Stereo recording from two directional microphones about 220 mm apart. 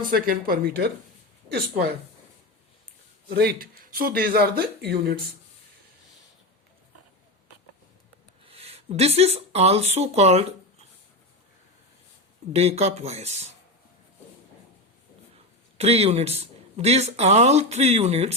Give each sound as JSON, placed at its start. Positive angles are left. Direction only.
{"t": 0.1, "sound": "speech", "side_deg": -40}
{"t": 3.2, "sound": "speech", "side_deg": -45}
{"t": 8.4, "sound": "speech", "side_deg": -30}
{"t": 12.5, "sound": "speech", "side_deg": -30}
{"t": 15.8, "sound": "speech", "side_deg": -30}